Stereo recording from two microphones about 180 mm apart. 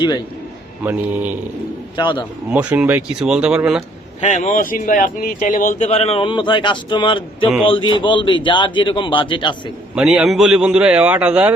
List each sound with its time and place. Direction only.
0.9 s speech: 10° right (ahead or behind)
2.0 s a man's voice: 25° left (ahead or behind)
2.5 s speech: 5° right (ahead or behind)
4.2 s a man's voice: 45° left (ahead or behind); by 9.6 s 25° left (ahead or behind)
9.9 s a man's voice: 5° right (ahead or behind)